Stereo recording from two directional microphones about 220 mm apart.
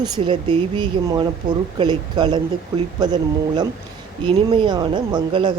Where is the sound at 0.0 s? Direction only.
25° right (ahead or behind).